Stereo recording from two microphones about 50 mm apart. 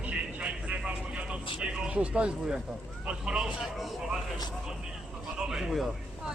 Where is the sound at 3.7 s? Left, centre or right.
Centre.